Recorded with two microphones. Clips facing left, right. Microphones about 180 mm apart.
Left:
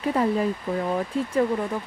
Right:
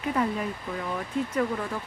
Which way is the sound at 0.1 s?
30° left (ahead or behind).